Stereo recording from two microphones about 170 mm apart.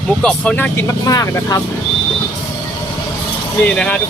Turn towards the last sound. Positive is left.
turn(degrees=5)  # may be behind; listen again after turning